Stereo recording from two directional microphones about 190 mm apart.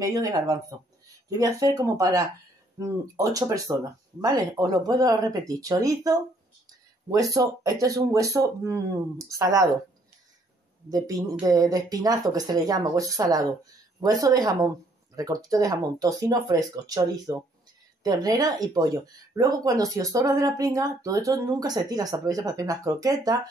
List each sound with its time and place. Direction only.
0.0 s speech: 20° right (ahead or behind)
10.9 s speech: 20° right (ahead or behind)